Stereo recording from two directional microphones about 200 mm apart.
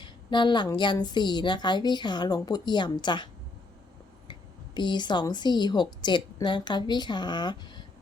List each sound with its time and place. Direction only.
0.0 s a woman's voice: 25° left (ahead or behind)
4.3 s a woman's voice: 25° left (ahead or behind)